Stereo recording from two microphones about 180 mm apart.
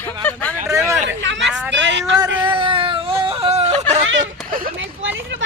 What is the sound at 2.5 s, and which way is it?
Speech, 30° right (ahead or behind).